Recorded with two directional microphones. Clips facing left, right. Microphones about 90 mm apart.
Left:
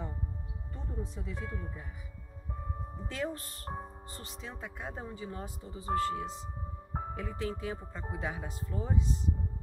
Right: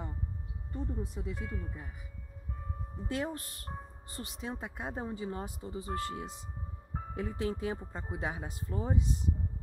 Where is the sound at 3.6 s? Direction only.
35° left (ahead or behind).